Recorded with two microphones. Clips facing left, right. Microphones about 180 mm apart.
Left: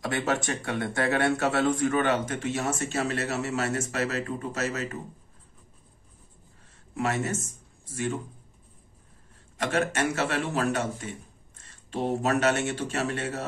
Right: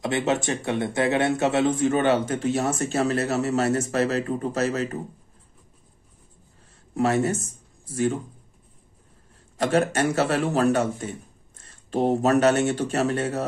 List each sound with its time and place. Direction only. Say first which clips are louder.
0.0 s speech: right 4 dB; 20° right (ahead or behind)
6.9 s speech: right 6 dB; 35° right (ahead or behind)
9.6 s speech: right 5 dB; 35° right (ahead or behind)